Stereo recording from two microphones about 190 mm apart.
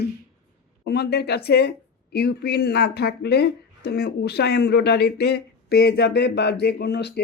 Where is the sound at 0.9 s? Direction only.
60° left (ahead or behind).